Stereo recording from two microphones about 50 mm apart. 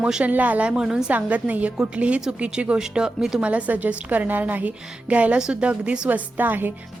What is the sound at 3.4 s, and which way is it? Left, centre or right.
A woman's voice, right.